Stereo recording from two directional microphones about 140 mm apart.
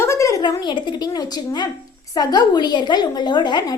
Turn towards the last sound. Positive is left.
turn(degrees=30)  # may be behind; listen again after turning